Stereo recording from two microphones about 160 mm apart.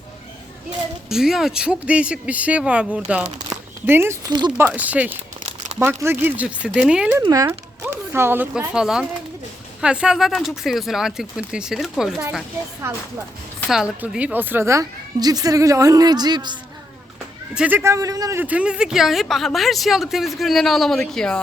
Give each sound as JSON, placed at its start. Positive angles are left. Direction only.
{"t": 1.1, "sound": "speech", "side_deg": -5}
{"t": 3.5, "sound": "a sound", "side_deg": -15}
{"t": 4.3, "sound": "speech", "side_deg": -25}
{"t": 4.5, "sound": "speech", "side_deg": -10}
{"t": 5.4, "sound": "crumpling", "side_deg": -45}
{"t": 5.8, "sound": "speech", "side_deg": -15}
{"t": 7.2, "sound": "speech", "side_deg": -20}
{"t": 13.7, "sound": "speech", "side_deg": -5}
{"t": 17.5, "sound": "speech", "side_deg": -10}